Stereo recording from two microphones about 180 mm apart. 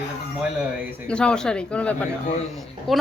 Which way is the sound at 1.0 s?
5° left (ahead or behind).